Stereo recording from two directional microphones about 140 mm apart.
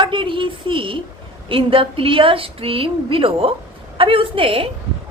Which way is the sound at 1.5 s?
40° right (ahead or behind).